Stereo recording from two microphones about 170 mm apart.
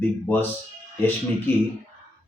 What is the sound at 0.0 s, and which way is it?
Speech, 10° left (ahead or behind).